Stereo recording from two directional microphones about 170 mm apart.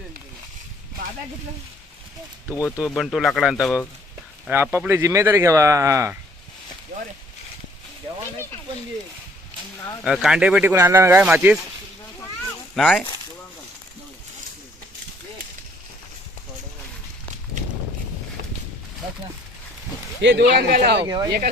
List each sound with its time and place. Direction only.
2.5 s speech: 15° left (ahead or behind)
2.7 s speech: centre (ahead or behind)
4.4 s speech: 10° right (ahead or behind)
6.9 s a sound: 55° right (ahead or behind)
10.0 s speech: centre (ahead or behind)
12.7 s speech: centre (ahead or behind)
20.2 s speech: 80° right
21.0 s speech: 25° right (ahead or behind)